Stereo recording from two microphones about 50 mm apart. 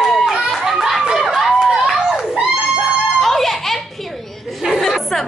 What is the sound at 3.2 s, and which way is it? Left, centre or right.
Music, centre.